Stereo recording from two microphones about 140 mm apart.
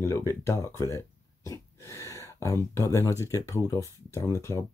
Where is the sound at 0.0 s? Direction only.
20° left (ahead or behind).